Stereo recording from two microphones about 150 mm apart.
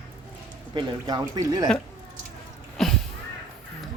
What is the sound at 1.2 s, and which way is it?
Speech, 25° right (ahead or behind).